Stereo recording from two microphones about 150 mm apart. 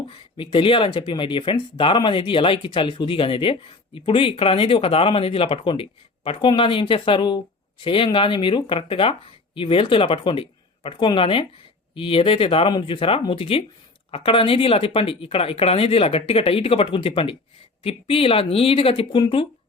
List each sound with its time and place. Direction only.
0.3 s speech: 35° left (ahead or behind)